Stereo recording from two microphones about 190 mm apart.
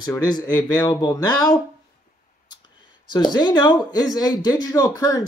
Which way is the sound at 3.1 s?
20° left (ahead or behind).